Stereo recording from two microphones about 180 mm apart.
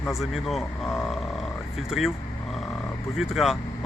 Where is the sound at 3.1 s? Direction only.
Centre (ahead or behind).